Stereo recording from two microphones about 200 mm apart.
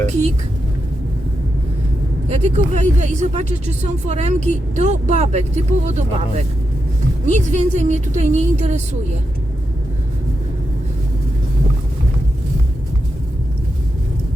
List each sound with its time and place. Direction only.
2.3 s speech: 35° right (ahead or behind)